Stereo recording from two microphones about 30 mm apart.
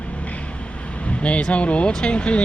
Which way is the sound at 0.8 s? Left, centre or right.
Left.